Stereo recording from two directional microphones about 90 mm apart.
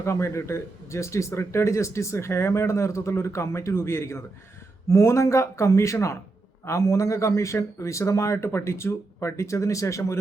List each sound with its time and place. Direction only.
0.0 s speech: 30° left (ahead or behind)